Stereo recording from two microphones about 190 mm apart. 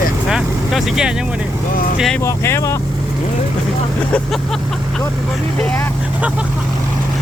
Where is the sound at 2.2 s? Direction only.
15° left (ahead or behind).